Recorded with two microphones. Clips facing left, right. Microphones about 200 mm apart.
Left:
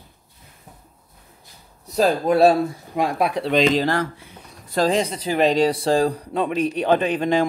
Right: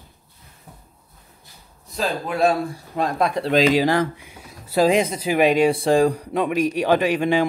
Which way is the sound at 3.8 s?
15° right (ahead or behind).